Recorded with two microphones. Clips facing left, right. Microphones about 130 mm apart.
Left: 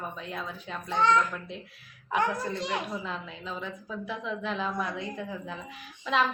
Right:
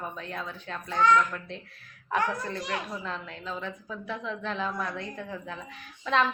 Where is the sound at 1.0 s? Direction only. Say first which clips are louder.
Right 2 dB; 30° left (ahead or behind).